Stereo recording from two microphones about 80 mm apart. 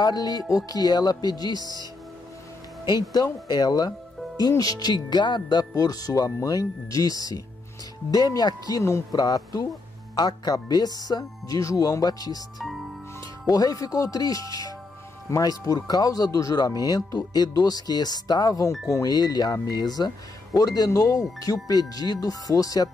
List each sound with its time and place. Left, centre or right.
0.0 s speech: left
3.0 s speech: left
13.5 s speech: left